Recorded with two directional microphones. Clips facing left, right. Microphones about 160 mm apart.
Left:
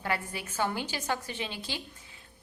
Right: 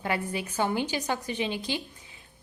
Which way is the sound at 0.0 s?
20° right (ahead or behind).